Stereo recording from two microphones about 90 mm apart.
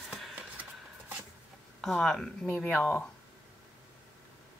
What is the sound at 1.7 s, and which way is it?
Speech, 5° left (ahead or behind).